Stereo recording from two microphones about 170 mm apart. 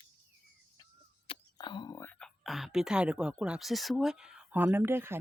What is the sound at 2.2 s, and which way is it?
A woman's voice, centre (ahead or behind).